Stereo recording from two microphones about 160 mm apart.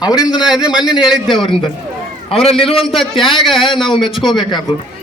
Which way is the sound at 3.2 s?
30° left (ahead or behind).